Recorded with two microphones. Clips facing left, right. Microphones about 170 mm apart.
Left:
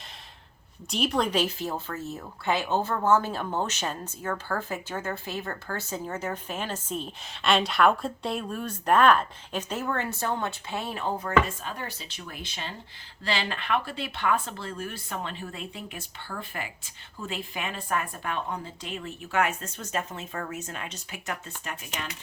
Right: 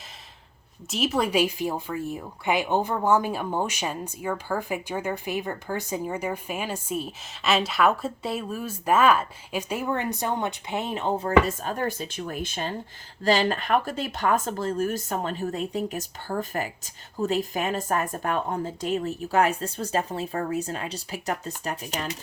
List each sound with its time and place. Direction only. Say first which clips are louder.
0.9 s speech: right 1 dB; 5° right (ahead or behind); by 11.3 s 25° right (ahead or behind)
11.4 s speech: right 8 dB; 45° right (ahead or behind)